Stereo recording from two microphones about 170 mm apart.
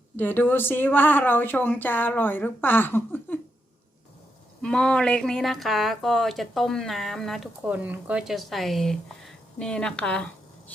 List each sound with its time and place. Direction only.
0.2 s speech: 10° left (ahead or behind)
4.6 s speech: 5° left (ahead or behind)